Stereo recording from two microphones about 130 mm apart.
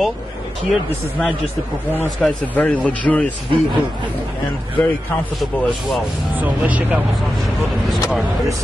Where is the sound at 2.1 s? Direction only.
10° left (ahead or behind).